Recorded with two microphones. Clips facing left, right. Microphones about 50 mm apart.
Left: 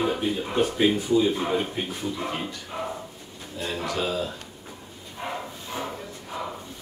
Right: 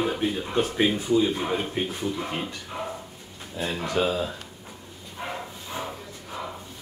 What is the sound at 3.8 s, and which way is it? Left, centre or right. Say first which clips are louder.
Speech: right 3 dB; right.